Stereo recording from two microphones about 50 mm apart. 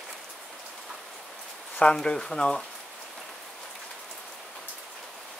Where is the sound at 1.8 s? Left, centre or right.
Centre.